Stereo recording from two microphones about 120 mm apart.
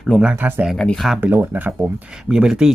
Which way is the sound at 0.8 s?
5° left (ahead or behind).